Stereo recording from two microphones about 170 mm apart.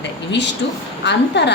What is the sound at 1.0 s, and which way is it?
Speech, 90° left.